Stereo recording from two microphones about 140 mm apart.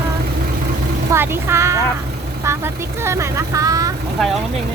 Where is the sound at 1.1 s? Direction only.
15° right (ahead or behind).